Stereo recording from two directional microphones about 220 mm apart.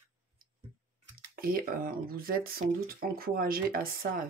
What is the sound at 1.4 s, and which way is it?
Speech, 40° right (ahead or behind).